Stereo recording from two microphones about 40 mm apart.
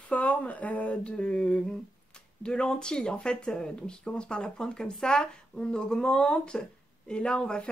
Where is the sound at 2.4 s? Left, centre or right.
Left.